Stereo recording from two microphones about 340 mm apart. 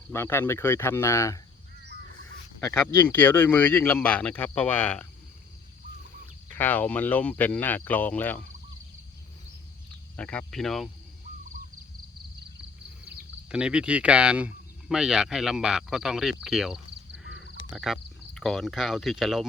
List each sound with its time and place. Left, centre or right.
0.1 s speech: centre
2.6 s speech: centre
6.5 s speech: centre
10.2 s speech: centre
13.1 s speech: centre
16.9 s crow: right
17.7 s speech: centre